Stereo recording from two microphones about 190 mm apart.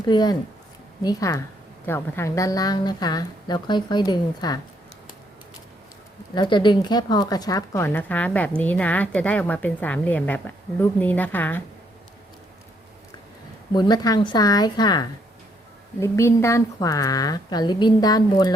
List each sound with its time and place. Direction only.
0.1 s a woman's voice: 20° left (ahead or behind)
6.3 s speech: 25° left (ahead or behind)
13.7 s a woman's voice: 20° left (ahead or behind)